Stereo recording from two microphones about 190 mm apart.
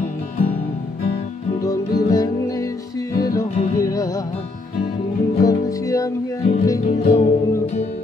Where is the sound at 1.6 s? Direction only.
20° left (ahead or behind).